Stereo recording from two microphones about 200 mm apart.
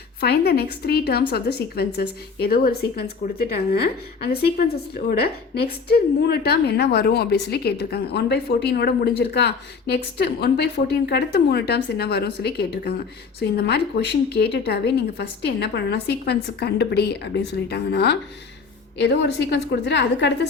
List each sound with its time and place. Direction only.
0.2 s a woman's voice: 50° left (ahead or behind)